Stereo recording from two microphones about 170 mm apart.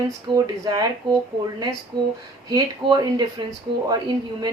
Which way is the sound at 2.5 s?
20° right (ahead or behind).